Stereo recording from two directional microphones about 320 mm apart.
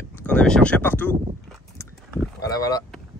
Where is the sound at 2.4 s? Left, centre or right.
Centre.